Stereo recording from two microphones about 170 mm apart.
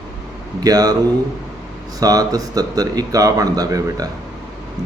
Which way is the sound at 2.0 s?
20° right (ahead or behind).